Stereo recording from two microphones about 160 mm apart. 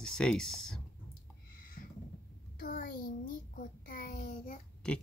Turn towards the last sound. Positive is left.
turn(degrees=5)  # may be behind; listen again after turning